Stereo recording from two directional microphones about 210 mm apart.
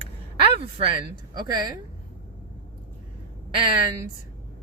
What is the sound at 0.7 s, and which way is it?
Speech, 25° right (ahead or behind).